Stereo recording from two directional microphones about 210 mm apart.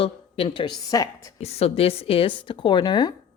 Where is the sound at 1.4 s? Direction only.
30° left (ahead or behind).